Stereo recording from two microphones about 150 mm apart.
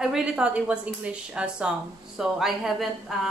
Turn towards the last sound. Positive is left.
turn(degrees=0)  # may be behind; listen again after turning